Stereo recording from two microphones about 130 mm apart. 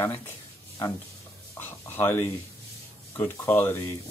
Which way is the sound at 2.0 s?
15° left (ahead or behind).